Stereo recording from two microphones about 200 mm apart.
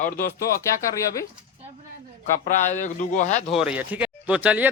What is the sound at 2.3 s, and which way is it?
Speech, 40° left (ahead or behind).